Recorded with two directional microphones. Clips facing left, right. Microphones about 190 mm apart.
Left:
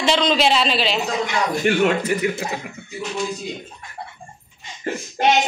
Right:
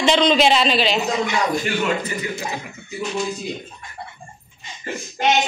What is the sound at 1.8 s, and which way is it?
Speech, 65° left (ahead or behind).